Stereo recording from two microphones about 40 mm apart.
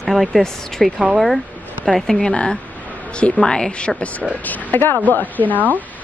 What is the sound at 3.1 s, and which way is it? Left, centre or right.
Speech, left.